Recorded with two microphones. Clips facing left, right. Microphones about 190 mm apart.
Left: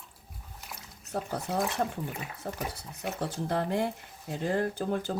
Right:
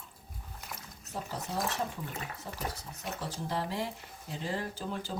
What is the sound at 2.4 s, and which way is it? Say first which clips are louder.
Speech: left 6 dB; 50° left (ahead or behind).